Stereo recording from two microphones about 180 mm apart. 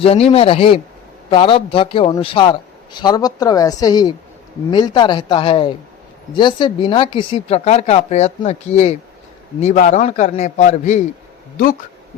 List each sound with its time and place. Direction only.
0.0 s a man's voice: 35° left (ahead or behind)